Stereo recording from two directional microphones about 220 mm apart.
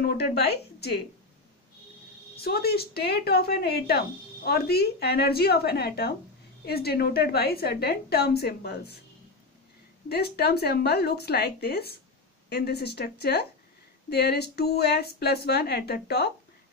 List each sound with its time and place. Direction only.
0.0 s speech: 45° left (ahead or behind)
2.3 s speech: 45° left (ahead or behind)
10.0 s speech: 45° left (ahead or behind)